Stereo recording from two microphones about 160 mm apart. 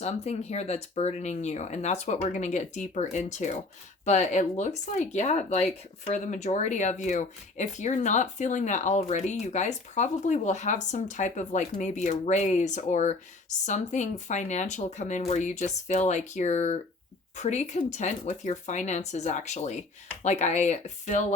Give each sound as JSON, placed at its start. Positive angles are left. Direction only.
{"t": 0.0, "sound": "speech", "side_deg": 40}